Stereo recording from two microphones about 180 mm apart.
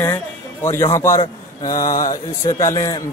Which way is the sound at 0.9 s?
15° left (ahead or behind).